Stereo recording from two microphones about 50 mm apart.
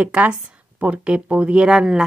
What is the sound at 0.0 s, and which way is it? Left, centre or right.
Speech, right.